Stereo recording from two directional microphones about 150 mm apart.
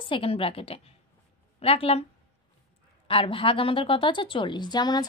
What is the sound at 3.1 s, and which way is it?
A woman's voice, 35° left (ahead or behind).